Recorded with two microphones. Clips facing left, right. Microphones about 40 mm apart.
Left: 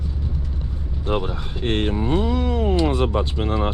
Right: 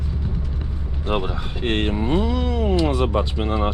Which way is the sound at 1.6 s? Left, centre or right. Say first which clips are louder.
Even; right.